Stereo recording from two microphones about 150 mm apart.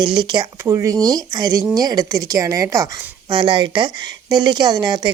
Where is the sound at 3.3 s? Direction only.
30° right (ahead or behind).